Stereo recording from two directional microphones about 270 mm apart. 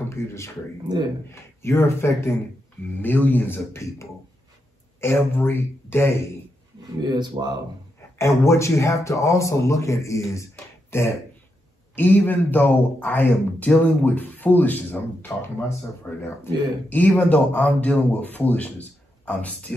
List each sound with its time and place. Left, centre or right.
0.1 s speech: centre
0.9 s speech: centre
1.3 s a man's voice: centre
7.0 s speech: centre
8.2 s a man's voice: centre
10.9 s a sound: centre
11.9 s a man's voice: centre